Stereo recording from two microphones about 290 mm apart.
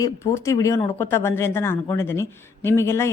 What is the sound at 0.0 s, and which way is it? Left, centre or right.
Speech, centre.